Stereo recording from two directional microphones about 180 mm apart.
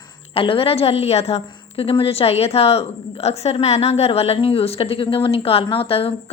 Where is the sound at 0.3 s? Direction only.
30° left (ahead or behind).